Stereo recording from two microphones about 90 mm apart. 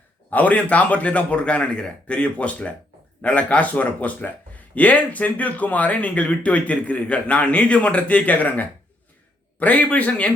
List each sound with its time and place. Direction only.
0.3 s speech: 15° left (ahead or behind)